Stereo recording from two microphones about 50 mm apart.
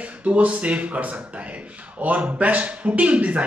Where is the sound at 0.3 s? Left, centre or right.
Right.